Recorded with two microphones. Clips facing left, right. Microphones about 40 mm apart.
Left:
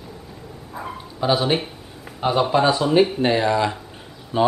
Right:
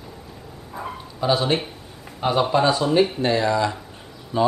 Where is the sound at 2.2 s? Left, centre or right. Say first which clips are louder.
Left 1 dB; centre.